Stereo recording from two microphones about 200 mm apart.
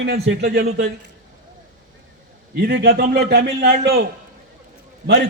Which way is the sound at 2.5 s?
50° right (ahead or behind).